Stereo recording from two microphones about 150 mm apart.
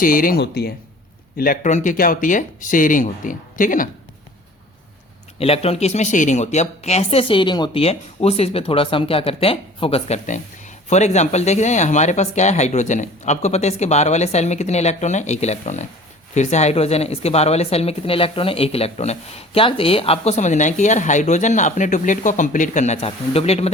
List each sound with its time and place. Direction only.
0.0 s speech: 70° left (ahead or behind); by 0.7 s 90° left
1.4 s speech: 60° left (ahead or behind)
5.4 s speech: 40° left (ahead or behind)
10.2 s speech: 55° left (ahead or behind)